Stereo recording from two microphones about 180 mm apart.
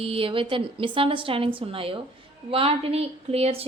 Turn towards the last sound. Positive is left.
turn(degrees=-35)  # may be behind; listen again after turning